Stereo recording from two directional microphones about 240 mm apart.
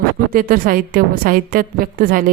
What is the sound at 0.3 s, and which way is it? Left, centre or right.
A woman's voice, right.